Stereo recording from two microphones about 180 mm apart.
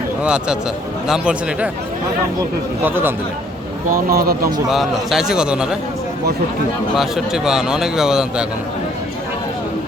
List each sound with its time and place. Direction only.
0.2 s a man's voice: 5° right (ahead or behind)
2.8 s speech: 10° right (ahead or behind)
3.8 s speech: 55° right (ahead or behind)
4.7 s a man's voice: centre (ahead or behind)
6.9 s a man's voice: centre (ahead or behind)